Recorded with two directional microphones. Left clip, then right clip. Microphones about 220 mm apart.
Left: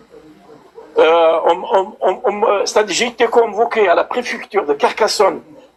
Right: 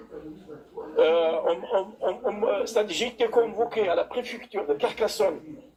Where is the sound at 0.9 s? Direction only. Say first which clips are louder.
Left 11 dB; 45° left (ahead or behind).